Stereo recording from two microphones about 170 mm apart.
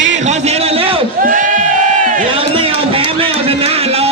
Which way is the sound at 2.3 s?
30° right (ahead or behind).